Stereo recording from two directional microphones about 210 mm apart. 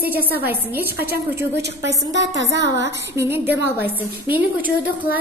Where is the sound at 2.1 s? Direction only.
60° right (ahead or behind).